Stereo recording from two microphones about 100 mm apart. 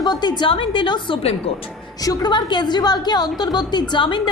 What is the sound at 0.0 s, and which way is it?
A woman's voice, 45° left (ahead or behind).